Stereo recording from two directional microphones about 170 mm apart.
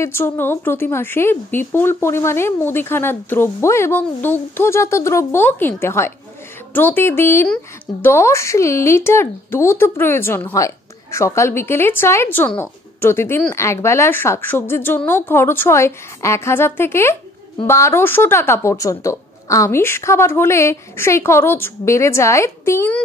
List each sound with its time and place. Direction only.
0.0 s speech: 15° left (ahead or behind)